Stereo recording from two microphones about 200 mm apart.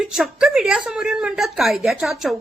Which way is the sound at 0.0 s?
5° right (ahead or behind).